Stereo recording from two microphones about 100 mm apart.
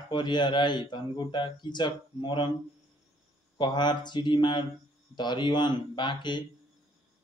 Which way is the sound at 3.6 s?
50° left (ahead or behind).